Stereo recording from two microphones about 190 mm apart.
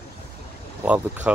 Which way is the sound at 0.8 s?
5° right (ahead or behind).